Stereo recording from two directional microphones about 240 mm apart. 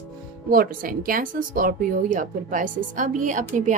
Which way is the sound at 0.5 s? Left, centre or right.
Right.